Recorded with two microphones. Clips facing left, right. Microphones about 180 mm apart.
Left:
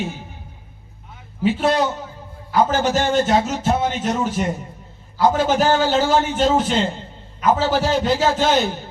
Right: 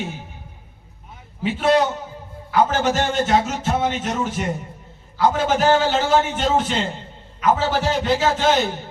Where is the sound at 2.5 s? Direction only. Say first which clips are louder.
Left 1 dB; 35° left (ahead or behind).